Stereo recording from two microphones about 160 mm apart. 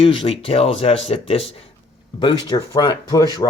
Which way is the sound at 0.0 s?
35° left (ahead or behind).